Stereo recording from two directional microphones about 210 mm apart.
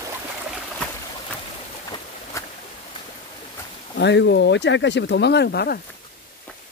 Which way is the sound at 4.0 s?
55° left (ahead or behind).